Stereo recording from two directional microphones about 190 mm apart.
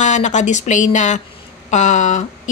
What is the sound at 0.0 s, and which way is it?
A woman's voice, 40° left (ahead or behind).